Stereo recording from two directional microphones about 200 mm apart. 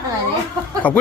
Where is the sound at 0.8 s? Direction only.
10° left (ahead or behind).